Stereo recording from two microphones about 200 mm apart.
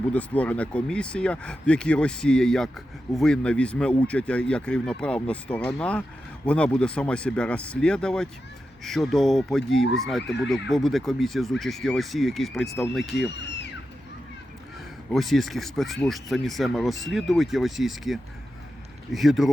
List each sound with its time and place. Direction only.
0.1 s speech: 5° left (ahead or behind)
13.3 s a sound: 60° left (ahead or behind)
15.1 s speech: centre (ahead or behind)